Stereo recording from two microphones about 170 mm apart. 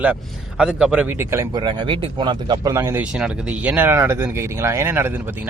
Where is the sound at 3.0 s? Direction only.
5° right (ahead or behind).